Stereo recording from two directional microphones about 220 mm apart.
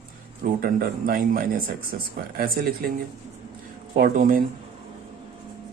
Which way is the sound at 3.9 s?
40° right (ahead or behind).